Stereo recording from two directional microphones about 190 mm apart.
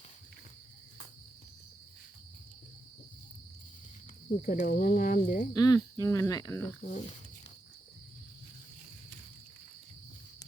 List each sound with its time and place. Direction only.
4.4 s speech: 45° left (ahead or behind)
5.5 s speech: 20° left (ahead or behind)
6.8 s speech: 40° left (ahead or behind)